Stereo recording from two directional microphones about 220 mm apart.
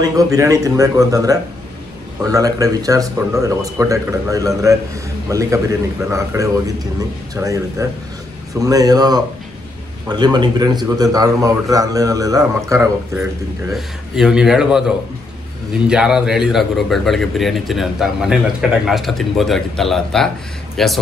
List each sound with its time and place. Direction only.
0.0 s speech: 15° right (ahead or behind)
13.7 s speech: 5° right (ahead or behind)
15.9 s speech: 5° right (ahead or behind)